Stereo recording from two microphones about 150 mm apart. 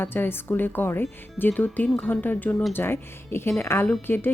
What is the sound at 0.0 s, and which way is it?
Speech, 15° left (ahead or behind).